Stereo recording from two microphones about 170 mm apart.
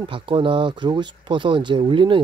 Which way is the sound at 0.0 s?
30° right (ahead or behind).